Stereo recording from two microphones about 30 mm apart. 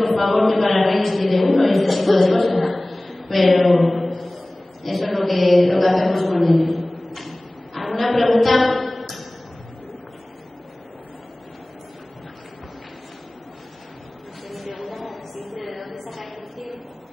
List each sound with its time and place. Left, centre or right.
0.0 s a man's voice: centre
5.1 s mantra: centre
14.8 s a sound: centre